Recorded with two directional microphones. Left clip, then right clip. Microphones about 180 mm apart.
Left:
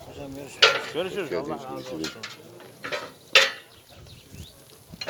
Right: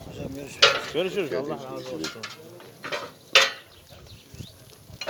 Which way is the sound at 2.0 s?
Centre (ahead or behind).